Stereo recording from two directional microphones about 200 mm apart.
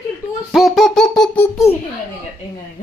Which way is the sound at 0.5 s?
Centre (ahead or behind).